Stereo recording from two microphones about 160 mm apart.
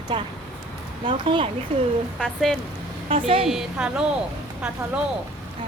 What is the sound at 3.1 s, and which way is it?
Speech, 35° right (ahead or behind).